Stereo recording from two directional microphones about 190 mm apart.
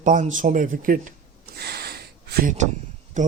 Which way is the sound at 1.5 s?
55° right (ahead or behind).